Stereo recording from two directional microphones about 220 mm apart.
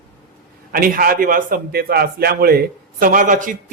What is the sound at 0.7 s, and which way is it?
A man's voice, 40° right (ahead or behind).